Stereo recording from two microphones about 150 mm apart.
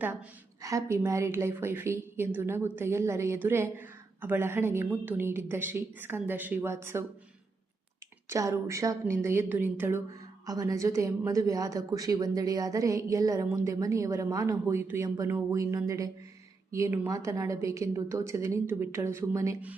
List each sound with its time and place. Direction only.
0.0 s a woman's voice: 10° right (ahead or behind)
8.3 s a woman's voice: 20° right (ahead or behind)
10.4 s a woman's voice: 25° right (ahead or behind)